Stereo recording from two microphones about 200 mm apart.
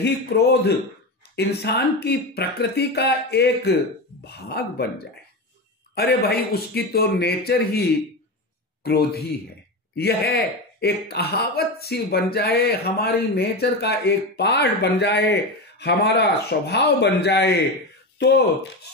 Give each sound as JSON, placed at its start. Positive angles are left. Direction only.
{"t": 0.0, "sound": "speech", "side_deg": 55}
{"t": 8.8, "sound": "speech", "side_deg": 50}